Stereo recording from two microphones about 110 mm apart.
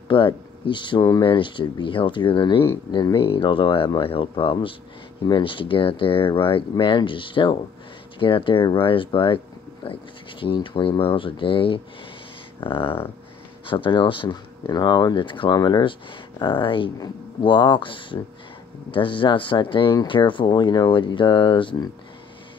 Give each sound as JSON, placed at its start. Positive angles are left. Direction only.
{"t": 0.1, "sound": "speech", "side_deg": 50}
{"t": 10.4, "sound": "speech", "side_deg": 50}
{"t": 15.5, "sound": "speech", "side_deg": 40}